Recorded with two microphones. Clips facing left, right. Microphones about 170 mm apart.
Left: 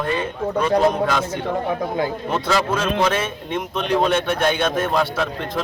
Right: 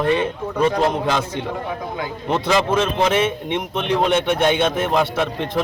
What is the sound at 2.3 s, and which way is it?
A man's voice, 20° right (ahead or behind).